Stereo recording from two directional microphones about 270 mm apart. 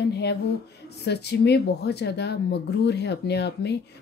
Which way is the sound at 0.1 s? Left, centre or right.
Left.